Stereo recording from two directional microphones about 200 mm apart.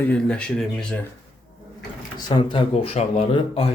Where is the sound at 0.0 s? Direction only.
5° left (ahead or behind).